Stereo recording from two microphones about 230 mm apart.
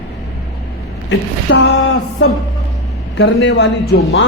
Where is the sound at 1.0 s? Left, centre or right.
Left.